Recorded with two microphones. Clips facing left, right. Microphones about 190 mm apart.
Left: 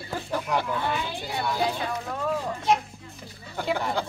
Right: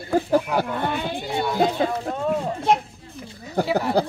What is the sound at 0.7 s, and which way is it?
Speech, 60° right (ahead or behind).